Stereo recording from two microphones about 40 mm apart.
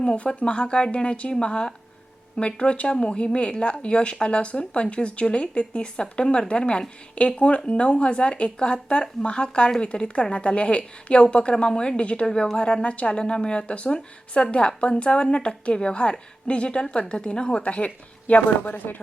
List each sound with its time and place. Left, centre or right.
0.0 s speech: left